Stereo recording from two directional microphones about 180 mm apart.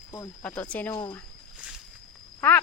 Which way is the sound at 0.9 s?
25° left (ahead or behind).